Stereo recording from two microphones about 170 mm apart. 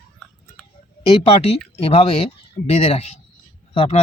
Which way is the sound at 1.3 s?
35° left (ahead or behind).